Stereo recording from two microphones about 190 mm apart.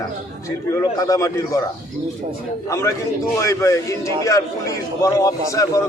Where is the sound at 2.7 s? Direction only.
15° left (ahead or behind).